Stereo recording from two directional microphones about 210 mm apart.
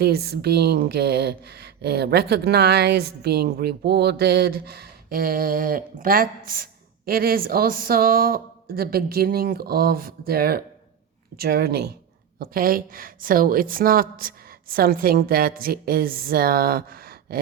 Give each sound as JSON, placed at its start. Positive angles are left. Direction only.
{"t": 0.0, "sound": "speech", "side_deg": -50}